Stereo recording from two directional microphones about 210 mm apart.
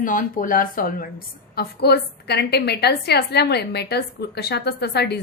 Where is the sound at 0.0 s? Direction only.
40° left (ahead or behind).